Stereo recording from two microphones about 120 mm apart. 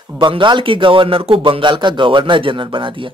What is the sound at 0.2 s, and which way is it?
Speech, 40° right (ahead or behind).